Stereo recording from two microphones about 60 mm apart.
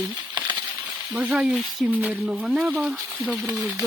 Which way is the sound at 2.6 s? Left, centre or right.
Right.